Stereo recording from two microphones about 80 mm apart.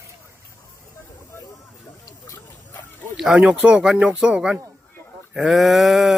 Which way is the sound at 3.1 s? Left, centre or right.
Centre.